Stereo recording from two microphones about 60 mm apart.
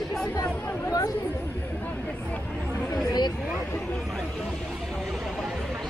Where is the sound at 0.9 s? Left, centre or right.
Left.